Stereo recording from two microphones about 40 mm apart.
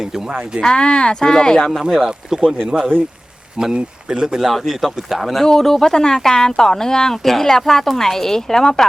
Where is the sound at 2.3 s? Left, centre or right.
Centre.